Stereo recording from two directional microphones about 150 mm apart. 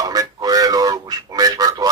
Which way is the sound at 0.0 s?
25° right (ahead or behind).